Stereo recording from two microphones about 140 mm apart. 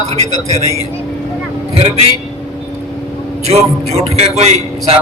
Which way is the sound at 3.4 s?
50° right (ahead or behind).